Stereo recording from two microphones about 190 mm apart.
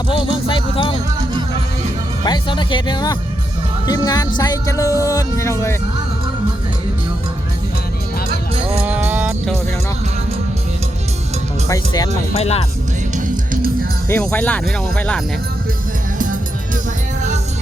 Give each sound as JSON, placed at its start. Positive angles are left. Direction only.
{"t": 0.1, "sound": "music", "side_deg": 25}
{"t": 2.2, "sound": "speech", "side_deg": 25}
{"t": 4.4, "sound": "music", "side_deg": 20}
{"t": 8.8, "sound": "music", "side_deg": -10}
{"t": 12.4, "sound": "speech", "side_deg": 35}
{"t": 13.1, "sound": "music", "side_deg": -45}
{"t": 14.1, "sound": "music", "side_deg": 10}
{"t": 16.1, "sound": "music", "side_deg": -45}